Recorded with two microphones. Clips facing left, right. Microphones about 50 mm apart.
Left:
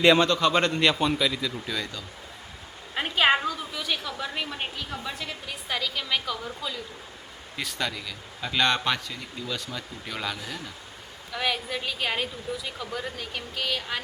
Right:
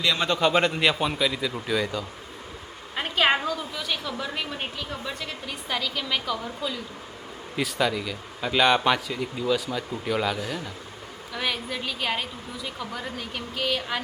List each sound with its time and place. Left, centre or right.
0.2 s a man's voice: centre
0.5 s a man's voice: centre
2.9 s a woman's voice: centre